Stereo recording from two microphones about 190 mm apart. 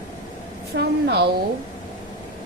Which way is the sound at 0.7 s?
60° right (ahead or behind).